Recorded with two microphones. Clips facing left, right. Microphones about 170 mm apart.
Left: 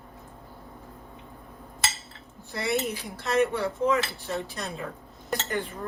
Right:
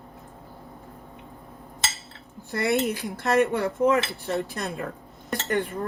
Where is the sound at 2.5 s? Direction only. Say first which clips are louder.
Right 4 dB; 60° right (ahead or behind).